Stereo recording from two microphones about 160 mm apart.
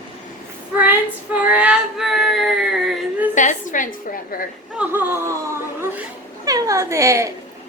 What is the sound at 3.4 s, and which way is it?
A woman's voice, 50° left (ahead or behind).